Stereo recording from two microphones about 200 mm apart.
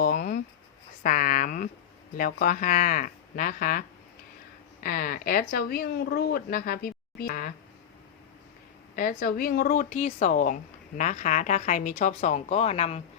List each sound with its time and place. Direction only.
0.0 s a sound: 45° left (ahead or behind)
2.1 s speech: 45° left (ahead or behind)
9.0 s speech: 45° left (ahead or behind); by 13.0 s 30° left (ahead or behind)